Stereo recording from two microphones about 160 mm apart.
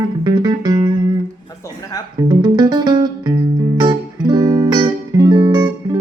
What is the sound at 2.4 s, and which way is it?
Music, 25° right (ahead or behind).